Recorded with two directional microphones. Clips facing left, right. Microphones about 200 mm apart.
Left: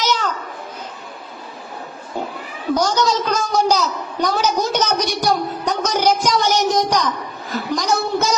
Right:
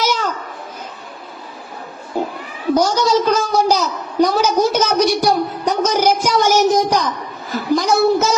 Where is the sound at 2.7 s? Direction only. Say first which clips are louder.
Right 2 dB; 10° right (ahead or behind).